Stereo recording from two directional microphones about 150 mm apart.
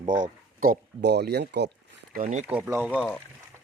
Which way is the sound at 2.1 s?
60° right (ahead or behind).